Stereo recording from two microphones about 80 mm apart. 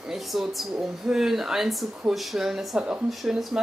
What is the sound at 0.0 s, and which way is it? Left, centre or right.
Speech, centre.